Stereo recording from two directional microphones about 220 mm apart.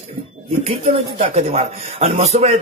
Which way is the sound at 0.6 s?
30° right (ahead or behind).